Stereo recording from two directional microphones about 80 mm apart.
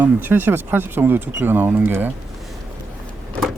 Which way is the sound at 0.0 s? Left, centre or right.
Right.